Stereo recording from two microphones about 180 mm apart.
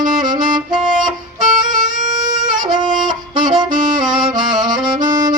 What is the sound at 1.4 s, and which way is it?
Music, 45° right (ahead or behind).